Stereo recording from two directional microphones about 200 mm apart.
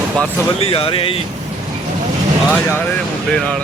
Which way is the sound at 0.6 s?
30° left (ahead or behind).